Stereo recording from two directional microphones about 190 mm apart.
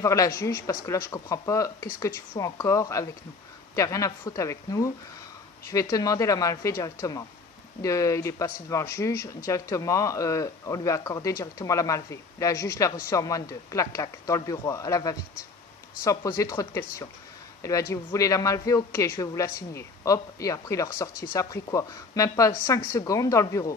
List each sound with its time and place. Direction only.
0.0 s speech: 15° left (ahead or behind)